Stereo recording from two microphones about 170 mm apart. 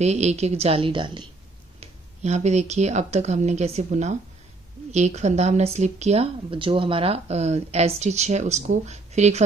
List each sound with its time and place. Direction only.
0.0 s speech: 40° right (ahead or behind)
1.8 s speech: 40° right (ahead or behind)